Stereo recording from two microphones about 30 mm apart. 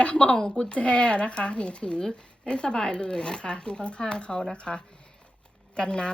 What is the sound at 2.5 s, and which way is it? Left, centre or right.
A woman's voice, left.